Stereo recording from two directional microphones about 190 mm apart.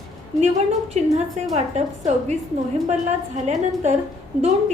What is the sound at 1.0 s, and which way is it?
A woman's voice, 35° right (ahead or behind).